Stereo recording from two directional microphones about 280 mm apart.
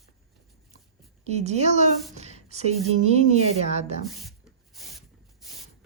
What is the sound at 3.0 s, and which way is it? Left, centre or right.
Speech, right.